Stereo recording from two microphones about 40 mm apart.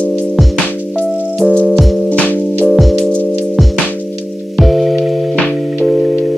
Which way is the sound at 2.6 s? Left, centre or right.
Centre.